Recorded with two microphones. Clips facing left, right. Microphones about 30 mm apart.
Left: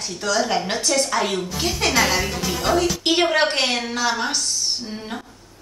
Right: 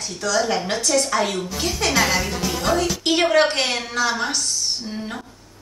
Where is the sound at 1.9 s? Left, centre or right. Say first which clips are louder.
Even; centre.